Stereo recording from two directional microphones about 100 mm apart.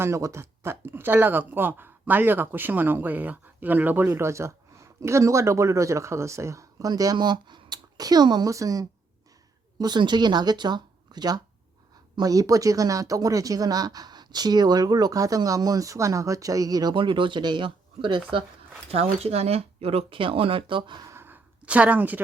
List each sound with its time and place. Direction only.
0.0 s speech: 30° right (ahead or behind)
4.1 s speech: 30° right (ahead or behind)
16.9 s speech: 55° right (ahead or behind)
18.9 s speech: 85° right; by 21.0 s 55° right (ahead or behind)
21.1 s sigh: 25° right (ahead or behind)
21.6 s speech: 15° right (ahead or behind)